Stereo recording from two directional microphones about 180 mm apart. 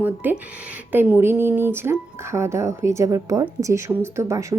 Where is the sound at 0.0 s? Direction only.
10° right (ahead or behind).